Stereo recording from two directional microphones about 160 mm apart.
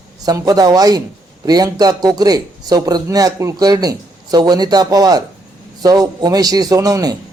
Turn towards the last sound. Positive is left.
turn(degrees=-20)  # may be behind; listen again after turning